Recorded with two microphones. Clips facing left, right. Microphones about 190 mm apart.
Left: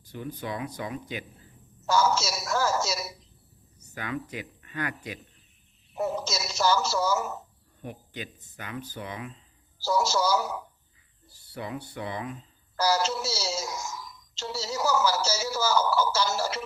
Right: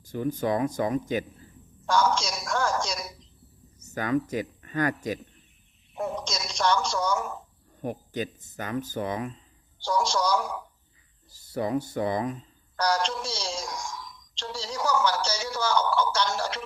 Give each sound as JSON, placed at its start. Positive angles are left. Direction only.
{"t": 0.0, "sound": "speech", "side_deg": -45}
{"t": 1.8, "sound": "a woman's voice", "side_deg": 5}
{"t": 3.8, "sound": "speech", "side_deg": -45}
{"t": 5.9, "sound": "a woman's voice", "side_deg": 5}
{"t": 7.8, "sound": "speech", "side_deg": -45}
{"t": 9.8, "sound": "a woman's voice", "side_deg": 5}
{"t": 11.4, "sound": "speech", "side_deg": -40}
{"t": 12.7, "sound": "a woman's voice", "side_deg": 5}